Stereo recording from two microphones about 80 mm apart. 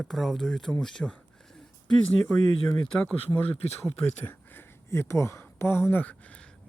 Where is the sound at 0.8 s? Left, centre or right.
Centre.